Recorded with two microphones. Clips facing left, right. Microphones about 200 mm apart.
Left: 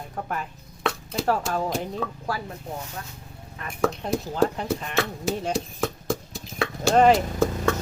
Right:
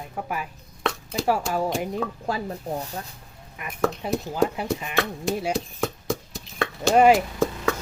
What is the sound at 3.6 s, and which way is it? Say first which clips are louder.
A woman's voice: even; 5° right (ahead or behind).